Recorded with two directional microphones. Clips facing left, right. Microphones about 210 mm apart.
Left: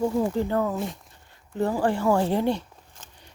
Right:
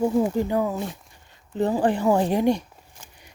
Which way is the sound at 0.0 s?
15° right (ahead or behind).